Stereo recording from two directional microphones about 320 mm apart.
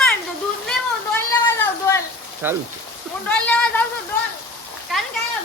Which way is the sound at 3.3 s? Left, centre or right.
Centre.